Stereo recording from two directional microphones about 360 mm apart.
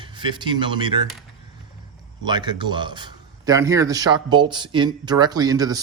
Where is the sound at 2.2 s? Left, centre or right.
Centre.